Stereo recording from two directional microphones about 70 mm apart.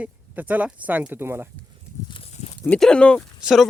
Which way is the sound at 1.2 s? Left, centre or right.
Right.